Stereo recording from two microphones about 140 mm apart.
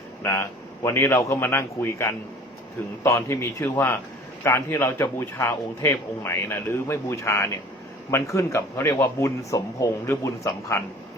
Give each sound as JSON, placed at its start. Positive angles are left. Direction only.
{"t": 0.2, "sound": "a man's voice", "side_deg": 20}